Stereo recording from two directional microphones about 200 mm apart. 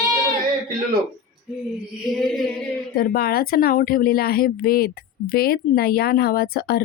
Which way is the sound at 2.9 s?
50° left (ahead or behind).